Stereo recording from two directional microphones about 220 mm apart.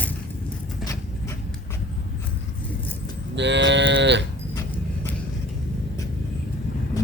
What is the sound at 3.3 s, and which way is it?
Livestock, 55° right (ahead or behind).